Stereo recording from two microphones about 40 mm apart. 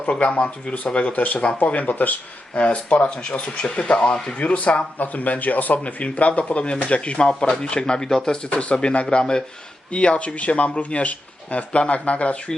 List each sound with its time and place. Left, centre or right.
0.1 s speech: left
2.6 s speech: left
4.4 s speech: left; by 8.4 s centre
8.4 s speech: left